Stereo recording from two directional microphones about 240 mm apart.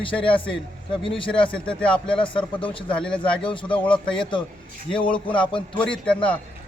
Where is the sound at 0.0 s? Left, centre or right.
Left.